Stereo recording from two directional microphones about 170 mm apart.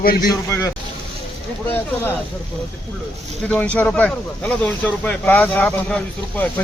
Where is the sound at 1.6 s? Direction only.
15° left (ahead or behind).